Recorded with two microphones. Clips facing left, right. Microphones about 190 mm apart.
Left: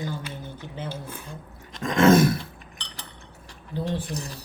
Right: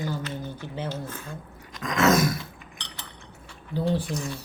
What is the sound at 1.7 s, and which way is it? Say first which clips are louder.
Roar: left 4 dB; 30° left (ahead or behind).